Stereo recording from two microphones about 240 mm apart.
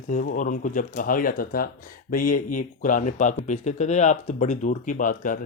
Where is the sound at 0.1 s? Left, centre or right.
Left.